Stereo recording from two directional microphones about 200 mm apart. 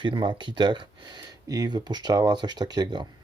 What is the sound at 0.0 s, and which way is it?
Speech, 25° right (ahead or behind).